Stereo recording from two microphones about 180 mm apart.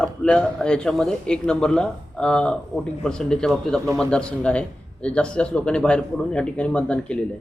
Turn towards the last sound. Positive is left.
turn(degrees=5)  # may be behind; listen again after turning